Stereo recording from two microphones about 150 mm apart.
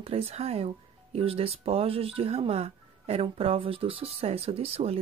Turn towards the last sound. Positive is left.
turn(degrees=-40)  # may be behind; listen again after turning